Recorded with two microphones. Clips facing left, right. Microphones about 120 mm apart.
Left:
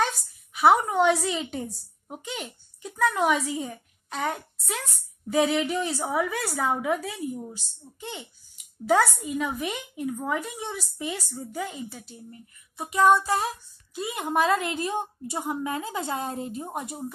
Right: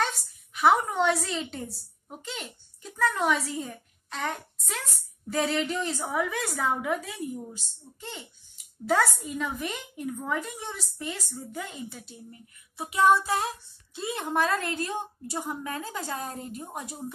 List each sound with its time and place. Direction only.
0.6 s a woman's voice: 10° left (ahead or behind); by 16.9 s 25° left (ahead or behind)